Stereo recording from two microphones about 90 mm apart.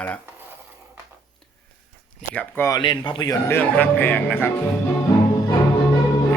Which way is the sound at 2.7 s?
55° left (ahead or behind).